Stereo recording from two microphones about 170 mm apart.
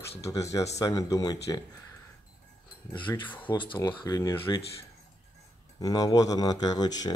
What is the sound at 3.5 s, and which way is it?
Speech, 25° left (ahead or behind).